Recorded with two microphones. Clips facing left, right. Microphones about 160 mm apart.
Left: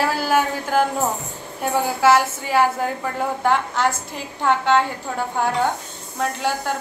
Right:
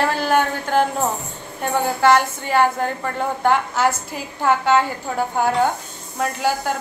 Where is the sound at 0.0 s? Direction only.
5° left (ahead or behind).